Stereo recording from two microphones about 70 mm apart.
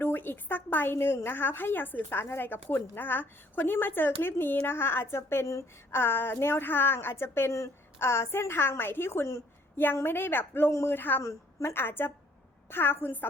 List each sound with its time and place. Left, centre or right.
0.0 s a woman's voice: left
5.9 s a woman's voice: left
11.2 s a woman's voice: left
11.7 s a woman's voice: left